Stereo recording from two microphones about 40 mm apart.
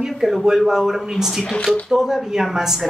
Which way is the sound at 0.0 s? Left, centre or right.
Centre.